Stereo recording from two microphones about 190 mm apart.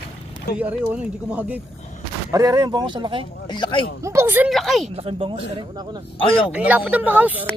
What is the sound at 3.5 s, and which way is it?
Speech, 25° left (ahead or behind).